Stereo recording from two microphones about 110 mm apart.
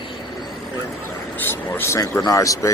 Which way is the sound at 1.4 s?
20° left (ahead or behind).